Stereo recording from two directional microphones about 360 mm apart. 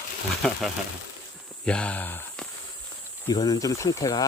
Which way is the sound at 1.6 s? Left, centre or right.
Centre.